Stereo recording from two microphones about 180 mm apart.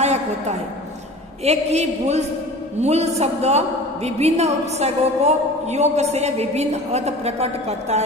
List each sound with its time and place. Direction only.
0.0 s a woman's voice: 35° right (ahead or behind)